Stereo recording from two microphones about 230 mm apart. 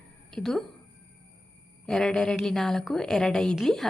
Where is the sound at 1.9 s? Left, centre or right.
Centre.